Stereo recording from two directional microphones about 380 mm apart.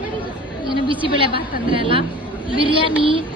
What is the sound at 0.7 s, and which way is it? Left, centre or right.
Speech, centre.